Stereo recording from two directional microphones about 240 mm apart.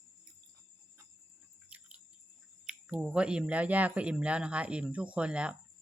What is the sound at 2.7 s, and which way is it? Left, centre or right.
Speech, centre.